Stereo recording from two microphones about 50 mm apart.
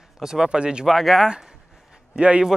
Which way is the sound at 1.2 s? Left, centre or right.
Centre.